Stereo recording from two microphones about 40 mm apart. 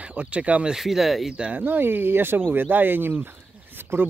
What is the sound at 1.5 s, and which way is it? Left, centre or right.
Speech, right.